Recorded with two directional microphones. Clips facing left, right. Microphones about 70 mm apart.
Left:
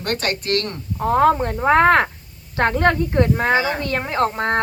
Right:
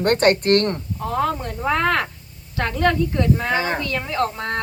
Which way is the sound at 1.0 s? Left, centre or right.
Left.